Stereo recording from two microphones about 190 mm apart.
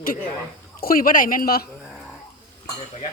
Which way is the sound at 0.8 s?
50° left (ahead or behind).